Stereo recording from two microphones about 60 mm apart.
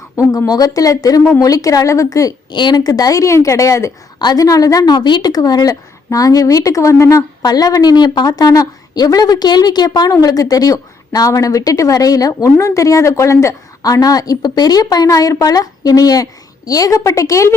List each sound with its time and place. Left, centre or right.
0.2 s a woman's voice: left
2.7 s speech: left
4.4 s a woman's voice: left
12.4 s speech: left
13.8 s a woman's voice: left
17.0 s speech: left